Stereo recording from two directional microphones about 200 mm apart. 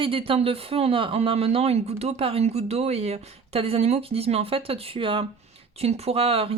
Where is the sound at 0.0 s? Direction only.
25° right (ahead or behind).